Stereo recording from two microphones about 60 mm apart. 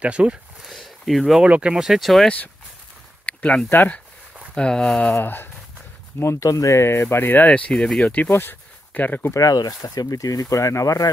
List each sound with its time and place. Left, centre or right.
0.0 s speech: centre
0.6 s a sound: centre
1.4 s speech: centre
1.8 s speech: centre
2.2 s speech: left
3.3 s a sound: left
4.6 s speech: centre
5.2 s speech: left
6.4 s speech: left
6.8 s speech: left
7.7 s speech: centre
8.3 s speech: left
9.3 s speech: left